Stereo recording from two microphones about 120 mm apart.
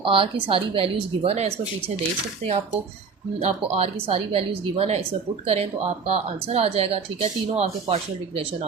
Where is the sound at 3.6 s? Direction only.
55° right (ahead or behind).